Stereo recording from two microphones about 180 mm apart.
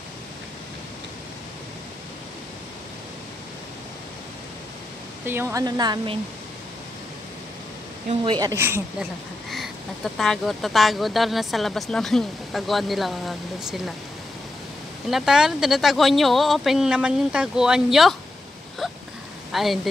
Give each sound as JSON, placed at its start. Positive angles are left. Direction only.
{"t": 5.2, "sound": "speech", "side_deg": -10}
{"t": 8.1, "sound": "speech", "side_deg": -25}
{"t": 9.5, "sound": "speech", "side_deg": 0}
{"t": 15.0, "sound": "speech", "side_deg": 0}